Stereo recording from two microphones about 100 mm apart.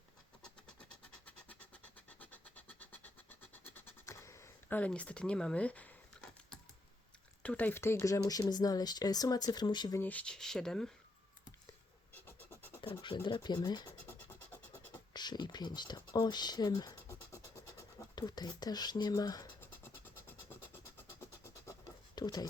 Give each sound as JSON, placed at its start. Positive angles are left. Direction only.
{"t": 0.4, "sound": "vehicle", "side_deg": 10}
{"t": 4.0, "sound": "a sound", "side_deg": 30}
{"t": 4.7, "sound": "speech", "side_deg": 15}
{"t": 7.4, "sound": "speech", "side_deg": 15}
{"t": 10.0, "sound": "speech", "side_deg": 15}
{"t": 12.2, "sound": "scratch", "side_deg": 20}
{"t": 12.8, "sound": "scratch", "side_deg": 55}
{"t": 13.2, "sound": "speech", "side_deg": 50}
{"t": 14.3, "sound": "scratch", "side_deg": 25}
{"t": 15.1, "sound": "speech", "side_deg": 45}
{"t": 17.1, "sound": "a sound", "side_deg": 30}
{"t": 18.1, "sound": "speech", "side_deg": 40}
{"t": 19.8, "sound": "vehicle", "side_deg": 20}
{"t": 22.1, "sound": "a sound", "side_deg": 45}